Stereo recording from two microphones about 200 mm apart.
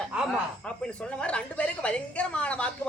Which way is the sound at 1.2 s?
5° left (ahead or behind).